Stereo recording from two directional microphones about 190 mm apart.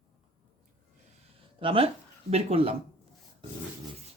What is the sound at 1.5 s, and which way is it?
Speech, 30° right (ahead or behind).